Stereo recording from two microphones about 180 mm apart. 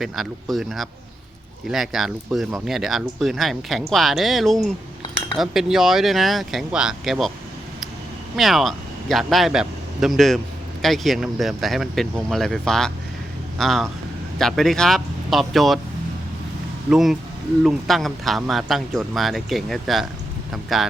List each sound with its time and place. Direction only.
0.0 s speech: centre (ahead or behind)
8.4 s speech: centre (ahead or behind)
16.9 s speech: centre (ahead or behind)